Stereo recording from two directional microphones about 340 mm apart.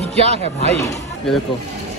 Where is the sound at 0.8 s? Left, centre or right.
Centre.